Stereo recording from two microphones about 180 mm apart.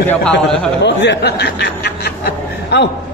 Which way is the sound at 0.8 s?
75° left (ahead or behind).